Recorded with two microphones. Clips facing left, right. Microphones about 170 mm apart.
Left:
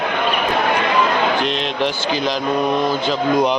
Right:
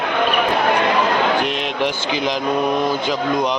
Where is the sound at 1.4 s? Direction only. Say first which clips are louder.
Left 1 dB; 15° right (ahead or behind).